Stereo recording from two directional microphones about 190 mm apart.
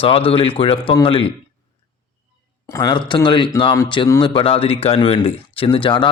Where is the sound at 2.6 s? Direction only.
20° left (ahead or behind).